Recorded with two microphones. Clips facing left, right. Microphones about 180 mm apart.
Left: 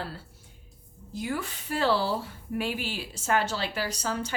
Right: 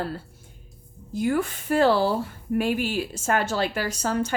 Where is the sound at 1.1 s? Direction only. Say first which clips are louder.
Right 8 dB; 50° right (ahead or behind).